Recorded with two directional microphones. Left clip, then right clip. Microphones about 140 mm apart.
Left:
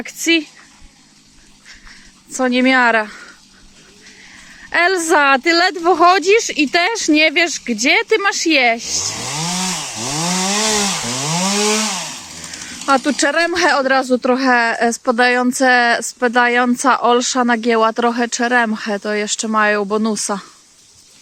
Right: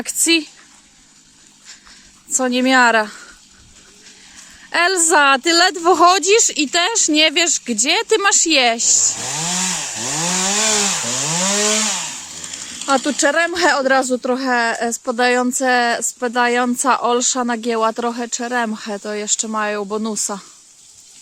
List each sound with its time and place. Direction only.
0.0 s speech: 40° right (ahead or behind)
2.3 s speech: 25° right (ahead or behind)
4.7 s speech: 25° right (ahead or behind)
10.2 s chainsaw: 20° left (ahead or behind)
11.0 s chainsaw: 30° left (ahead or behind)
12.8 s speech: 15° right (ahead or behind)